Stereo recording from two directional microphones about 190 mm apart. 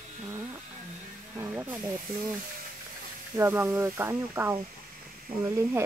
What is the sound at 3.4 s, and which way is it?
Speech, 15° right (ahead or behind).